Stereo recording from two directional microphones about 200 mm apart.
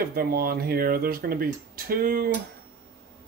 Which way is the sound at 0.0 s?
50° right (ahead or behind).